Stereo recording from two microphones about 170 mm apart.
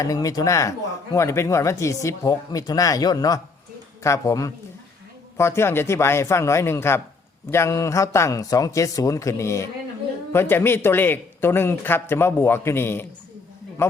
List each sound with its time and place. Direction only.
0.0 s a man's voice: 20° left (ahead or behind)